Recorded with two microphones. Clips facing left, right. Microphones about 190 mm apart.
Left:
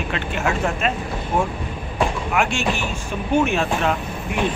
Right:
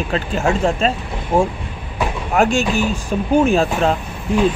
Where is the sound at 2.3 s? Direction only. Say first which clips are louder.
Right 5 dB; 40° right (ahead or behind).